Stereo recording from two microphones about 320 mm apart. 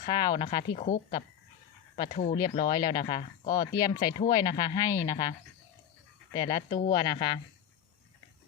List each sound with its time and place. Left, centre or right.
0.0 s speech: centre
3.8 s speech: centre
6.3 s speech: centre